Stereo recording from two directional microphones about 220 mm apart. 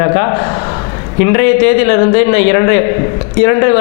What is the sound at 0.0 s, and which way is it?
A man's voice, 20° left (ahead or behind).